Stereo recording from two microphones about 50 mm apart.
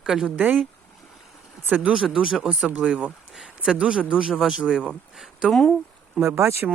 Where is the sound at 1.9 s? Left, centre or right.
Centre.